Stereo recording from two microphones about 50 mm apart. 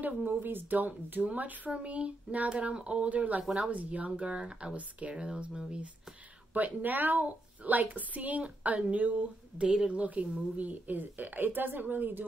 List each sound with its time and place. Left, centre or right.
0.0 s a woman's voice: right; by 5.8 s centre
6.5 s a woman's voice: right